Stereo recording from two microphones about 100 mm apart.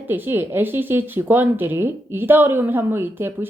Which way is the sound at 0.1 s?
20° right (ahead or behind).